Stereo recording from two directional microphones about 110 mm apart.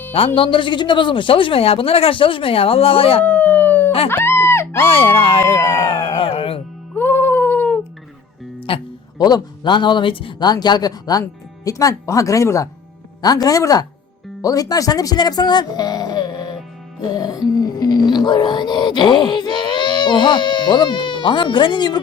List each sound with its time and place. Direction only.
0.3 s speech: 50° left (ahead or behind)
3.2 s howl: 15° left (ahead or behind)
4.1 s a sound: 20° left (ahead or behind)
4.9 s speech: 55° left (ahead or behind)
5.8 s a sound: 50° left (ahead or behind)
6.9 s a sound: 20° left (ahead or behind)
8.7 s speech: 55° left (ahead or behind)
9.1 s speech: 40° left (ahead or behind)
10.5 s speech: 40° left (ahead or behind)